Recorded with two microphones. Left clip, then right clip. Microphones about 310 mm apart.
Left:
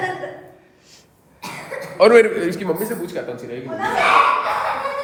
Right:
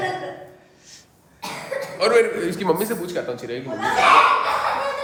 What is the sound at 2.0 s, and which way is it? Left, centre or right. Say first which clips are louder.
Speech: left 6 dB; centre.